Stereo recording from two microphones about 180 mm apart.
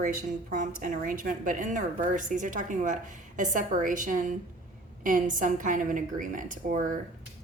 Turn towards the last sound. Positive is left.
turn(degrees=-45)  # may be behind; listen again after turning